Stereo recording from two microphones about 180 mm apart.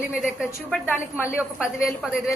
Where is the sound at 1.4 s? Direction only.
5° right (ahead or behind).